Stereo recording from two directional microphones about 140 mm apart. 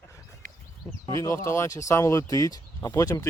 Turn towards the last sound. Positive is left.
turn(degrees=25)  # may be behind; listen again after turning